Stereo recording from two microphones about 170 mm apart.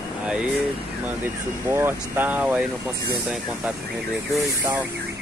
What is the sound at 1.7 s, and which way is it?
Speech, 15° right (ahead or behind).